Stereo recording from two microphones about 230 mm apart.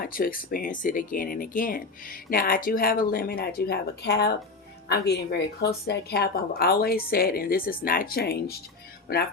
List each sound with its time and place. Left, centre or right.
0.0 s speech: left